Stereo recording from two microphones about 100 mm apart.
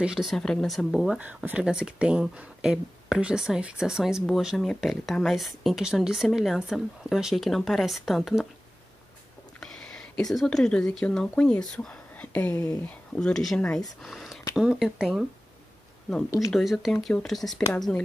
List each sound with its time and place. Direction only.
0.0 s speech: 5° right (ahead or behind)
0.4 s speech: 5° left (ahead or behind)
1.2 s speech: 15° right (ahead or behind); by 8.5 s centre (ahead or behind)
9.6 s speech: 5° left (ahead or behind)
16.5 s speech: centre (ahead or behind)